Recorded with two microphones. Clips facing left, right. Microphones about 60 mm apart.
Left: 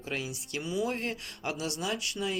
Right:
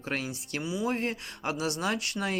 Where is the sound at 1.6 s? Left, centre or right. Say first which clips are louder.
Right 4 dB; right.